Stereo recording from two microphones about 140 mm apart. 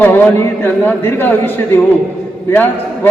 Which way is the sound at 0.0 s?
15° left (ahead or behind).